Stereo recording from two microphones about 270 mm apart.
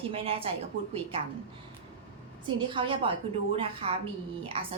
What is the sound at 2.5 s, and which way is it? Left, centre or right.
A woman's voice, centre.